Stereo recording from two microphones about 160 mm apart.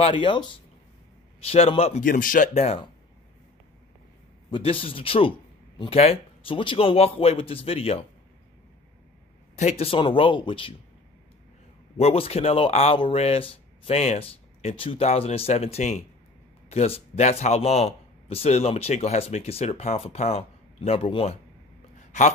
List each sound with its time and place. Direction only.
0.0 s speech: 30° left (ahead or behind)
2.0 s speech: 60° left (ahead or behind); by 2.9 s 40° left (ahead or behind)
4.5 s speech: 35° left (ahead or behind)
9.6 s speech: 40° left (ahead or behind)
12.0 s speech: 40° left (ahead or behind)